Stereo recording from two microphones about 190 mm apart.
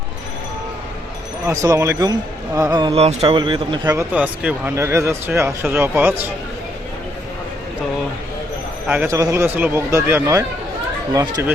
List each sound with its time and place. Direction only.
1.5 s speech: 15° right (ahead or behind)
3.8 s speech: 10° right (ahead or behind)
8.9 s speech: 10° right (ahead or behind)